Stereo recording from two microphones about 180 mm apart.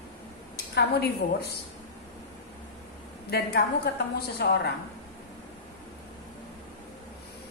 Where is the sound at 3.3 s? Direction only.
65° left (ahead or behind).